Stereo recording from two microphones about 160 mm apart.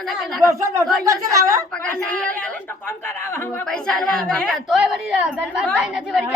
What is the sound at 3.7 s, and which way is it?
Speech, 5° left (ahead or behind).